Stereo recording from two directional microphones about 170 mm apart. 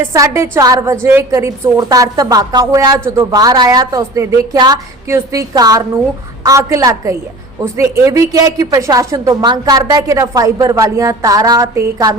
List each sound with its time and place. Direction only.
0.1 s a woman's voice: 15° right (ahead or behind)